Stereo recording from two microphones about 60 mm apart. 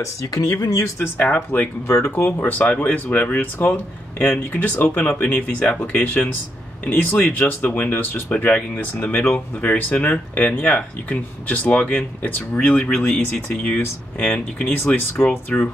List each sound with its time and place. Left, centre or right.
0.3 s speech: left
1.2 s speech: left
1.9 s speech: left
5.6 s speech: centre
6.0 s speech: left; by 15.6 s centre